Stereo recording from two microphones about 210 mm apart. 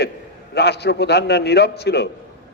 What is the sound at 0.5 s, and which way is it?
A man's voice, 50° left (ahead or behind).